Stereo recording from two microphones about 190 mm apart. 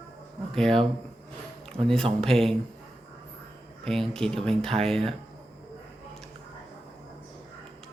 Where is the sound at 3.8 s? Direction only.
Centre (ahead or behind).